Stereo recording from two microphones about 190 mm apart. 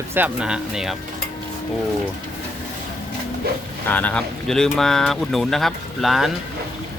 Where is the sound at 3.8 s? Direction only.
10° left (ahead or behind).